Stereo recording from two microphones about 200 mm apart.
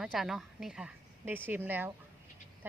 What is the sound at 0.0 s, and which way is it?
A woman's voice, centre (ahead or behind).